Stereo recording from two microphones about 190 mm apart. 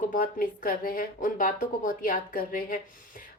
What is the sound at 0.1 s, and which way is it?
A woman's voice, 45° left (ahead or behind).